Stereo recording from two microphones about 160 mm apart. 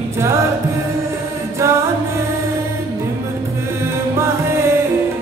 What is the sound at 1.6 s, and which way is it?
Music, 15° right (ahead or behind).